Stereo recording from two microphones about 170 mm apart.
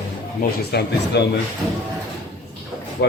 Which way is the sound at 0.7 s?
70° left (ahead or behind).